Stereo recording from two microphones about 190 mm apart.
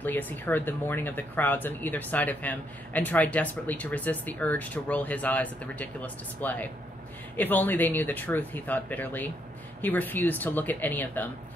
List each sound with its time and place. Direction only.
0.0 s speech: 10° left (ahead or behind)